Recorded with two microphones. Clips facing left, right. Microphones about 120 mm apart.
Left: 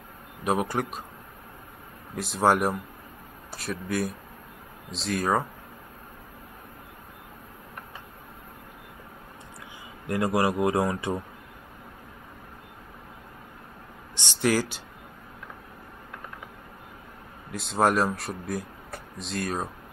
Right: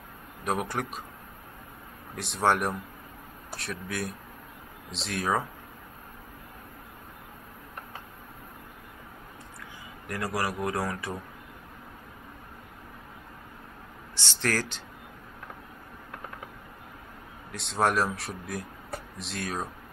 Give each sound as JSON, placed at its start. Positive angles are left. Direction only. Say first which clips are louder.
{"t": 0.4, "sound": "speech", "louder": "left 4 dB", "side_deg": 0}
{"t": 2.1, "sound": "speech", "louder": "left 3 dB", "side_deg": 0}
{"t": 10.0, "sound": "speech", "louder": "left 7 dB", "side_deg": 25}
{"t": 14.1, "sound": "a sound", "louder": "left 5 dB", "side_deg": 15}
{"t": 17.5, "sound": "speech", "louder": "left 3 dB", "side_deg": 0}